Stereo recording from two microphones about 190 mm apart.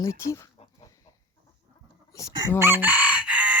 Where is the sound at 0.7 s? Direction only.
15° left (ahead or behind).